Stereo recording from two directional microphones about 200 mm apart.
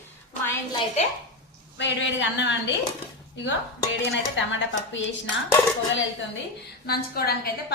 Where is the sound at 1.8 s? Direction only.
65° left (ahead or behind).